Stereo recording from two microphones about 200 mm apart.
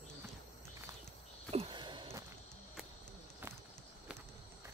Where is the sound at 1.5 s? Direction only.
25° right (ahead or behind).